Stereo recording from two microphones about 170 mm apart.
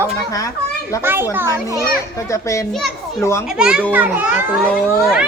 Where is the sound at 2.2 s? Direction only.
20° left (ahead or behind).